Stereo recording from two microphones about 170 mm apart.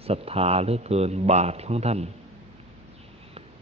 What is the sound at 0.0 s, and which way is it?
A man's voice, 35° right (ahead or behind).